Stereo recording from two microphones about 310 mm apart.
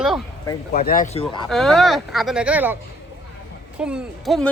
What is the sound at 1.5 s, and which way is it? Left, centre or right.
A woman's voice, centre.